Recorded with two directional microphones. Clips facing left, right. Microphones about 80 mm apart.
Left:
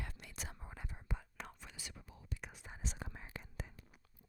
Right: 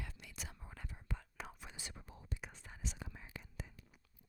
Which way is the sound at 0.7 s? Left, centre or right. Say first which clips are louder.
Left 1 dB; left.